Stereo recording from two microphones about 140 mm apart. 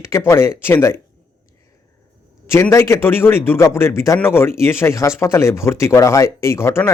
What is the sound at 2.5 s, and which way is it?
Speech, 20° left (ahead or behind).